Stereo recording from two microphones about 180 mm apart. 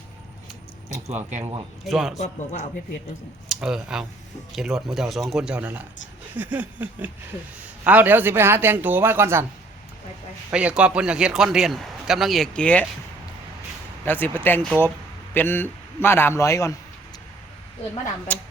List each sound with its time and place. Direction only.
1.1 s speech: 40° right (ahead or behind)
1.8 s a man's voice: centre (ahead or behind)
2.1 s a man's voice: 40° left (ahead or behind)
3.5 s a man's voice: centre (ahead or behind)
10.5 s a man's voice: 5° right (ahead or behind)
14.0 s speech: 10° left (ahead or behind)
18.3 s speech: 10° left (ahead or behind)